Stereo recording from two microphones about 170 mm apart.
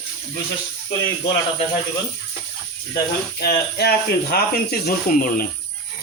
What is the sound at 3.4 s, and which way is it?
Speech, 70° left (ahead or behind).